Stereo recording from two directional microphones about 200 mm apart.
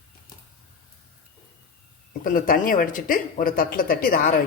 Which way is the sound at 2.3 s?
45° left (ahead or behind).